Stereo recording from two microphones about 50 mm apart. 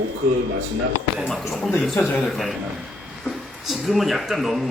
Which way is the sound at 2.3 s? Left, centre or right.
Centre.